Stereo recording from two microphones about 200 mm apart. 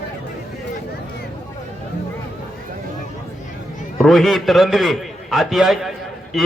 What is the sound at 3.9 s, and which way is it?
A man's voice, centre (ahead or behind).